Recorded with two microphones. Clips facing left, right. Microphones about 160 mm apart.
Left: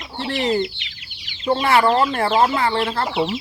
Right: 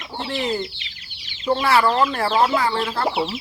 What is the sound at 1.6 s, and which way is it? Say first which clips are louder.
Speech: left 2 dB; 25° left (ahead or behind).